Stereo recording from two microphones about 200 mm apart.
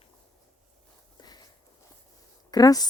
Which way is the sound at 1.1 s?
20° left (ahead or behind).